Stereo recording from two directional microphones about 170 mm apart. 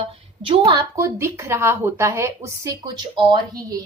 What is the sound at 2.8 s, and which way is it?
Speech, 25° right (ahead or behind).